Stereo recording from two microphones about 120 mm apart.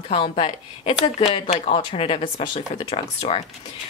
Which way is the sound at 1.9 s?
55° left (ahead or behind).